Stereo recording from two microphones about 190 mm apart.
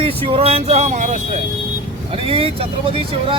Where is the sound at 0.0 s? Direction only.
30° right (ahead or behind).